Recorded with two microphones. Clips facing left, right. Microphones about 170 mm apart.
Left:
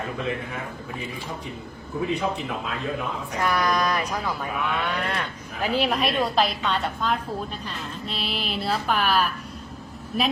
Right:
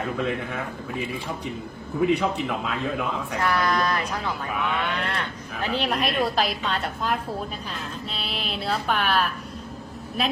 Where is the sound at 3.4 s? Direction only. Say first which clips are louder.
Left 1 dB; 15° left (ahead or behind).